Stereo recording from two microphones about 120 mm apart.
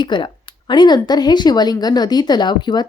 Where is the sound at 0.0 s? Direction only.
40° left (ahead or behind).